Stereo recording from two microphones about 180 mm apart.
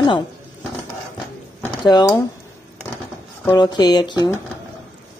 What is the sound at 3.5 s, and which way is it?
Speech, 25° left (ahead or behind).